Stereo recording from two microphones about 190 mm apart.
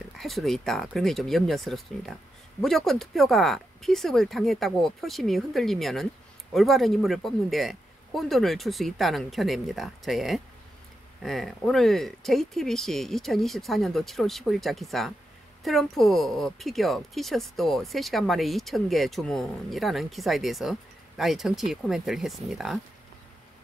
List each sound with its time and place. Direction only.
0.1 s a woman's voice: centre (ahead or behind)